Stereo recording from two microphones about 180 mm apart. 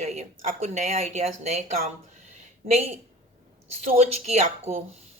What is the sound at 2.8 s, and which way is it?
Speech, 35° right (ahead or behind).